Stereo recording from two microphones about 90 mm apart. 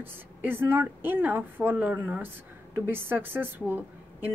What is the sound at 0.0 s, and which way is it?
A woman's voice, 25° right (ahead or behind).